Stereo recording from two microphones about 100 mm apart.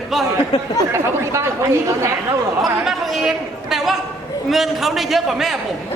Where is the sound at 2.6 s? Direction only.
Centre (ahead or behind).